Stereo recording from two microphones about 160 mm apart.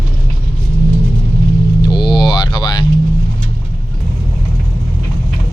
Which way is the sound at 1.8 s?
30° left (ahead or behind).